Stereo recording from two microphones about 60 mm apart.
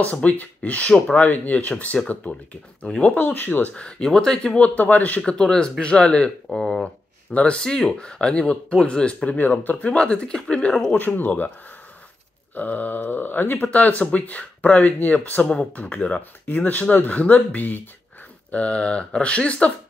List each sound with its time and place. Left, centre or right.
0.1 s speech: left
3.2 s speech: left
3.7 s speech: centre
5.2 s speech: centre; by 9.8 s left
9.8 s speech: centre
11.0 s speech: left
12.5 s speech: left
18.5 s speech: centre